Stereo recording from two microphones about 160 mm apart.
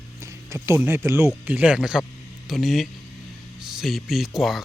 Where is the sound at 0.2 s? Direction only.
20° right (ahead or behind).